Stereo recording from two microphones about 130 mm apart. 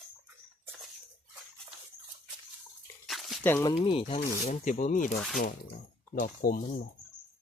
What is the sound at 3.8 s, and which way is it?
Speech, 50° left (ahead or behind).